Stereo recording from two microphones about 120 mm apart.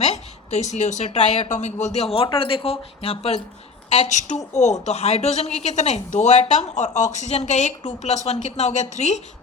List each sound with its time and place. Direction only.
0.0 s a woman's voice: 65° left (ahead or behind)
4.6 s speech: 70° left (ahead or behind)